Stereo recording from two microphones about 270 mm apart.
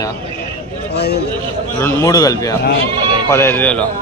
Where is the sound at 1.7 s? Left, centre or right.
Centre.